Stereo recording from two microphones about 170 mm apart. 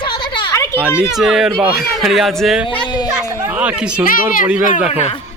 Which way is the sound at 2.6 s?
25° left (ahead or behind).